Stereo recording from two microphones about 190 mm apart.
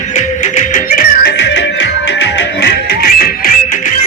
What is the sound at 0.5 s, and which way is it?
Music, 45° left (ahead or behind).